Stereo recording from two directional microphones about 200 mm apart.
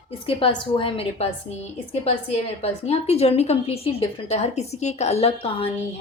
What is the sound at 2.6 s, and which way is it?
A woman's voice, 30° left (ahead or behind).